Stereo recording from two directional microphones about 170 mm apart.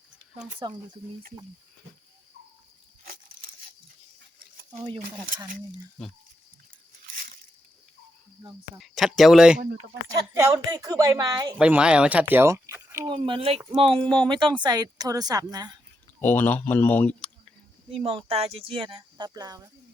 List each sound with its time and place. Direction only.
0.6 s speech: 25° right (ahead or behind)
8.8 s speech: centre (ahead or behind)
10.1 s speech: 20° right (ahead or behind)
11.6 s speech: 5° right (ahead or behind); by 13.6 s 30° right (ahead or behind)
13.9 s speech: 5° left (ahead or behind)
14.3 s speech: 25° right (ahead or behind)
16.2 s speech: 10° left (ahead or behind)
17.9 s speech: 35° right (ahead or behind)